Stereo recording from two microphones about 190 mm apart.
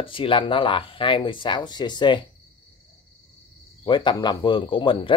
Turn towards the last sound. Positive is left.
turn(degrees=25)  # may be behind; listen again after turning